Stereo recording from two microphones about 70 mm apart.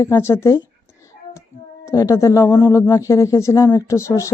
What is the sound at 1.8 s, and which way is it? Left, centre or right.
Speech, left.